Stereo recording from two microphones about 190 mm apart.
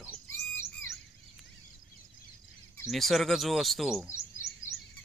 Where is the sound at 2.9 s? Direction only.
Centre (ahead or behind).